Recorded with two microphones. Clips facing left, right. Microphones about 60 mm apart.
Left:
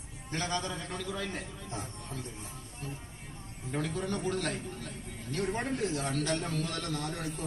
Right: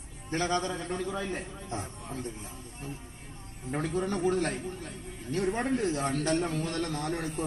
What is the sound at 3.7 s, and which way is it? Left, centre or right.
A man's voice, right.